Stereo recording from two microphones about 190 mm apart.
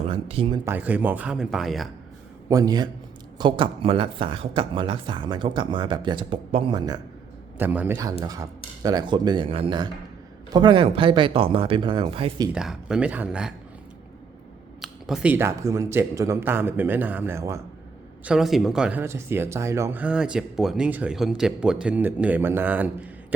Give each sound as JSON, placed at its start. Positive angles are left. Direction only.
{"t": 0.1, "sound": "speech", "side_deg": -30}
{"t": 0.6, "sound": "speech", "side_deg": -10}
{"t": 2.5, "sound": "speech", "side_deg": -20}
{"t": 7.6, "sound": "speech", "side_deg": -10}
{"t": 12.5, "sound": "speech", "side_deg": -5}
{"t": 14.8, "sound": "speech", "side_deg": 0}
{"t": 18.3, "sound": "speech", "side_deg": 0}